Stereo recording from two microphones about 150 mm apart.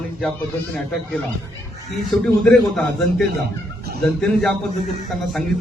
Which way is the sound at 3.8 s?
90° right.